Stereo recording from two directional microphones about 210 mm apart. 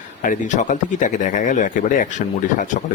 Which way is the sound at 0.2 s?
40° left (ahead or behind).